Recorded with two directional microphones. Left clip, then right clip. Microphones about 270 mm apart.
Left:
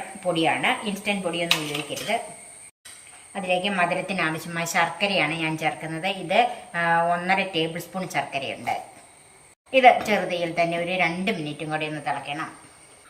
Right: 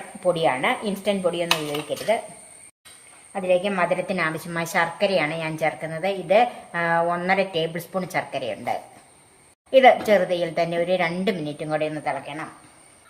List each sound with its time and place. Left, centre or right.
0.4 s a woman's voice: centre
3.3 s a woman's voice: centre
9.7 s a woman's voice: centre